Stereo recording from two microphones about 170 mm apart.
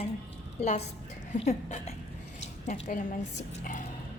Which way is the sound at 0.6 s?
40° left (ahead or behind).